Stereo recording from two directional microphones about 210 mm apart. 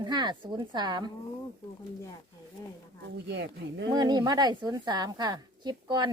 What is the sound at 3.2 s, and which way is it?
Speech, 55° right (ahead or behind).